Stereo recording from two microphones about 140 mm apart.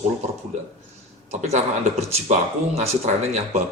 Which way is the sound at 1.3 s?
50° right (ahead or behind).